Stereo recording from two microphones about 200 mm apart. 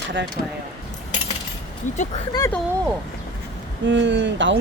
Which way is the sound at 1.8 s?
40° left (ahead or behind).